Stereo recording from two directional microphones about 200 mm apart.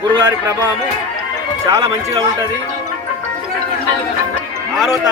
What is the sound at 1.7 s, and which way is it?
Speech, 15° right (ahead or behind).